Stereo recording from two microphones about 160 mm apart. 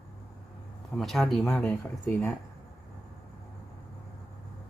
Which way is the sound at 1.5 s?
10° left (ahead or behind).